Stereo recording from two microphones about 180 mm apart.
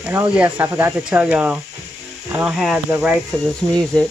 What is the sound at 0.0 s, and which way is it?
Speech, 10° right (ahead or behind).